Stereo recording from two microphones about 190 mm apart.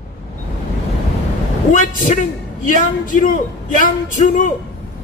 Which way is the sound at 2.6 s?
45° left (ahead or behind).